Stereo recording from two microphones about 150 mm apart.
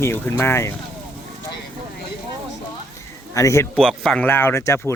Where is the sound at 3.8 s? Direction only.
5° left (ahead or behind).